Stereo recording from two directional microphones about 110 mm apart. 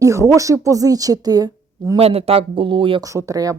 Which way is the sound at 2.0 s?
65° right (ahead or behind).